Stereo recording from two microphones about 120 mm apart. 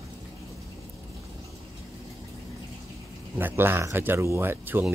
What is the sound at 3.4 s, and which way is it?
Speech, 20° right (ahead or behind).